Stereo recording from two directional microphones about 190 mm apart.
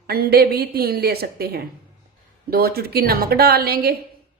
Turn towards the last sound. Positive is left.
turn(degrees=-55)  # may be behind; listen again after turning